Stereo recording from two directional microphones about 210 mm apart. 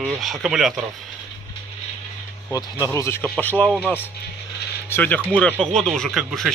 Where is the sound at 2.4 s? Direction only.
15° left (ahead or behind).